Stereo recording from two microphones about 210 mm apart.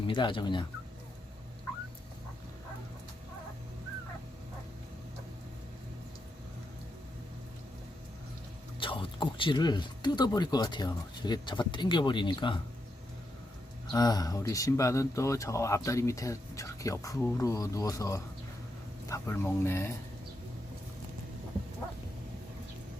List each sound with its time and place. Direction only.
0.1 s speech: 25° left (ahead or behind)
8.8 s speech: 25° left (ahead or behind)
13.9 s speech: 20° left (ahead or behind)